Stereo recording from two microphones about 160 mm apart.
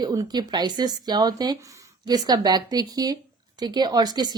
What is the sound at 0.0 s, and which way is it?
Speech, 25° right (ahead or behind).